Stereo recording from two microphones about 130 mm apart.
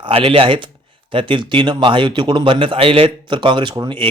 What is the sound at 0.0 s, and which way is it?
Speech, 45° right (ahead or behind).